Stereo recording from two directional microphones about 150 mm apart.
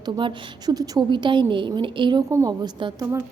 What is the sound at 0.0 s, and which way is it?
A woman's voice, 30° right (ahead or behind).